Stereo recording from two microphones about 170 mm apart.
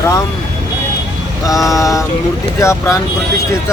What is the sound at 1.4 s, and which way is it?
Vehicle, 20° left (ahead or behind).